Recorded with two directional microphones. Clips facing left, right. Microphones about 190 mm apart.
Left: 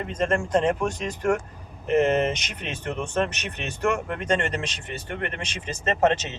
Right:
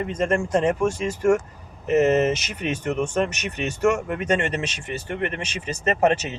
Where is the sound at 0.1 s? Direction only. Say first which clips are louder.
Even; 10° right (ahead or behind).